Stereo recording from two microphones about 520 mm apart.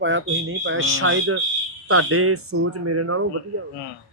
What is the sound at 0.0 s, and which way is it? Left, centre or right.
Speech, right.